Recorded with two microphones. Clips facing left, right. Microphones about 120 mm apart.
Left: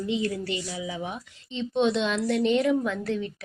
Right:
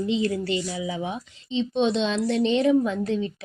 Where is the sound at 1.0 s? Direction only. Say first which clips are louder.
Right 4 dB; 20° right (ahead or behind).